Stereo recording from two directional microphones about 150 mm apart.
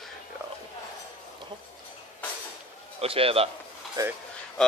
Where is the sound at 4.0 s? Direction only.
20° right (ahead or behind).